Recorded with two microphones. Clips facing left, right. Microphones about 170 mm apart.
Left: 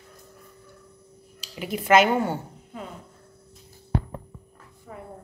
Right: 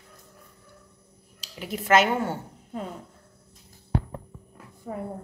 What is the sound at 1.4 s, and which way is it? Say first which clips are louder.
Speech: left 3 dB; centre (ahead or behind).